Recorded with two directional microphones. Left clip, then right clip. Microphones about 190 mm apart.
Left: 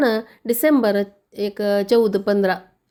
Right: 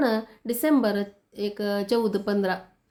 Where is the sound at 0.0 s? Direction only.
40° left (ahead or behind).